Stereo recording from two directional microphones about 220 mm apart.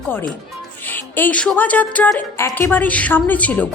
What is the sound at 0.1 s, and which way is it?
A woman's voice, 10° left (ahead or behind).